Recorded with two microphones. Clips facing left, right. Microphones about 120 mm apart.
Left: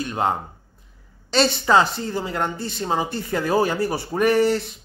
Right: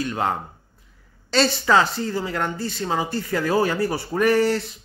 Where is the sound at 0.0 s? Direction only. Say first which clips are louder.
Left 1 dB; 20° left (ahead or behind).